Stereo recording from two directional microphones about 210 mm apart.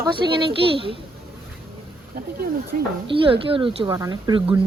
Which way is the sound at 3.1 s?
25° right (ahead or behind).